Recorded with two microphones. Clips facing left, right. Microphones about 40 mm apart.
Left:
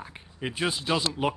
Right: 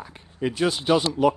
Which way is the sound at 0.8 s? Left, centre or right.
Right.